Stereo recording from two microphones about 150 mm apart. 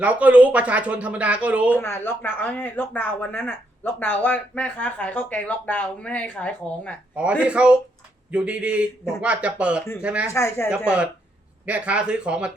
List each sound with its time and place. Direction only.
0.0 s speech: 10° right (ahead or behind)
1.7 s speech: 15° left (ahead or behind)
7.4 s speech: 5° right (ahead or behind)
10.3 s speech: 15° left (ahead or behind)
10.7 s speech: 5° right (ahead or behind)